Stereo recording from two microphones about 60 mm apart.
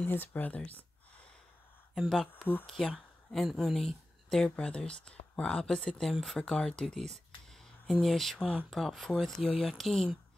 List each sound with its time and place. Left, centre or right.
0.0 s speech: left
2.0 s speech: centre